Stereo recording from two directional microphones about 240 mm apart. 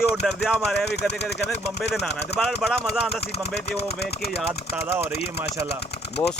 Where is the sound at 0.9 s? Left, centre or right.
Left.